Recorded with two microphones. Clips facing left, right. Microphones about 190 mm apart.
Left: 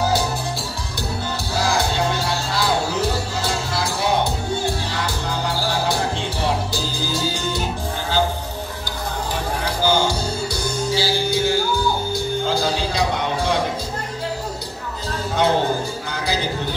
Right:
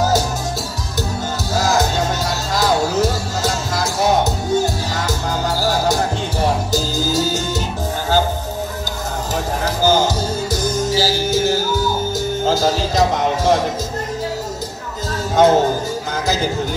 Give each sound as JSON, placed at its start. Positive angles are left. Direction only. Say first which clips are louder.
{"t": 1.5, "sound": "music", "louder": "right 4 dB", "side_deg": -45}
{"t": 9.8, "sound": "music", "louder": "right 4 dB", "side_deg": -45}
{"t": 15.3, "sound": "music", "louder": "right 6 dB", "side_deg": -45}